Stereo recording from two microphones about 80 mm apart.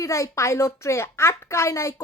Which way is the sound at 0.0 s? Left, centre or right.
Left.